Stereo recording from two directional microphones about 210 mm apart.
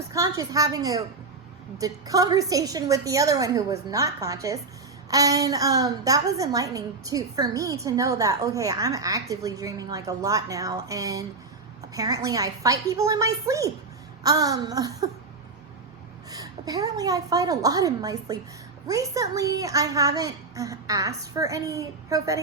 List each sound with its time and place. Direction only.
0.1 s a woman's voice: 15° right (ahead or behind)
16.3 s a woman's voice: 15° right (ahead or behind)